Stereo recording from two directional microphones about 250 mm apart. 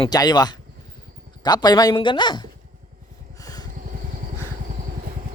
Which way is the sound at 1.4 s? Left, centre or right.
Centre.